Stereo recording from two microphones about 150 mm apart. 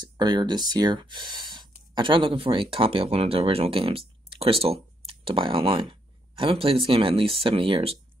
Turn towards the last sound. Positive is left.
turn(degrees=-35)  # may be behind; listen again after turning